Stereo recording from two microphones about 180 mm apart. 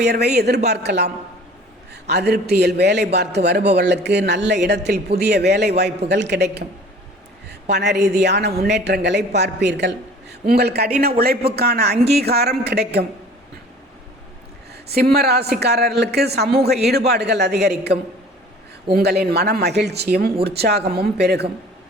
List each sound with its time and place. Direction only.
0.0 s a woman's voice: 65° right (ahead or behind)
7.7 s a man's voice: 65° right (ahead or behind)
14.8 s a woman's voice: 60° right (ahead or behind)
19.2 s a woman's voice: 65° right (ahead or behind)